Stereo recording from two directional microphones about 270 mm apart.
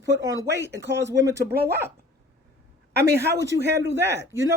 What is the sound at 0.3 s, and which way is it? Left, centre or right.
Speech, right.